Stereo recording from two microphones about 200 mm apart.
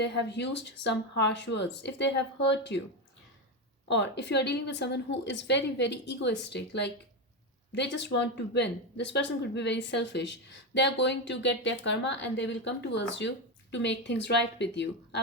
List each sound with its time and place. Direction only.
0.0 s a woman's voice: 60° left (ahead or behind)
3.8 s a woman's voice: 60° left (ahead or behind)